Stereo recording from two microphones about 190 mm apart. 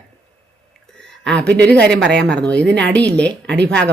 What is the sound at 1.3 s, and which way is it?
Speech, 65° right (ahead or behind).